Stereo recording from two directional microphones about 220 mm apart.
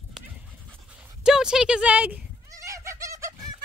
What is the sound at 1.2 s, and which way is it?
Fowl, 5° right (ahead or behind).